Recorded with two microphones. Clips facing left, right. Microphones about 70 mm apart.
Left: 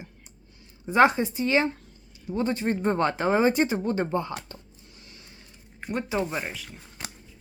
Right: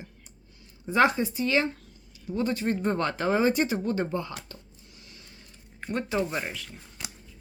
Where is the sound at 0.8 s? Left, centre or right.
Left.